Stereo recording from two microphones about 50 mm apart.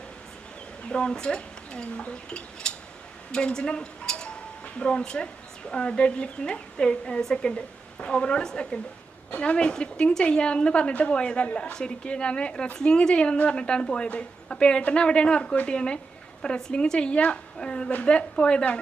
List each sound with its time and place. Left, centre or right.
0.9 s a woman's voice: centre